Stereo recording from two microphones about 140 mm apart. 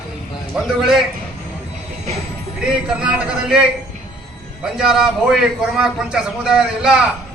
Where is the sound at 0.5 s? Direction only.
5° right (ahead or behind).